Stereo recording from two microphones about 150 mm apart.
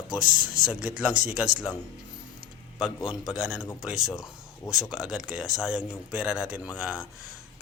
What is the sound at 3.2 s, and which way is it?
Speech, 5° right (ahead or behind).